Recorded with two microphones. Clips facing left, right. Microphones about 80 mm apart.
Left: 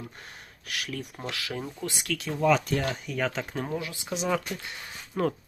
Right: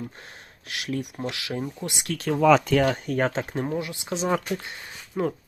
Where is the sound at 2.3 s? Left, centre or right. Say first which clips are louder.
Right 6 dB; right.